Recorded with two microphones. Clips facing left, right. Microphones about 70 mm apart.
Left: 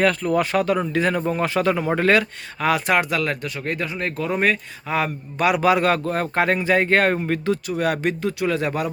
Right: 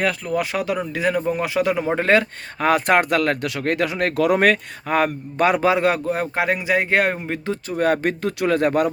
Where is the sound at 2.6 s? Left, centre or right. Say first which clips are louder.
Right 3 dB; right.